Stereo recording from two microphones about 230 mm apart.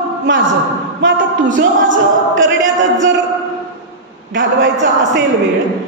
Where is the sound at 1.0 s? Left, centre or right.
Right.